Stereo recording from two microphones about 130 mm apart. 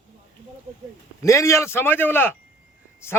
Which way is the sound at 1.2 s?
25° left (ahead or behind).